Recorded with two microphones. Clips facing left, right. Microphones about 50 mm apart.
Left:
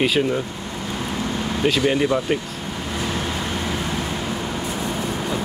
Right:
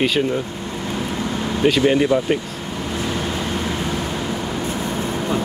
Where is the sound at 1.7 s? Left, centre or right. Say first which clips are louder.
Right 3 dB; centre.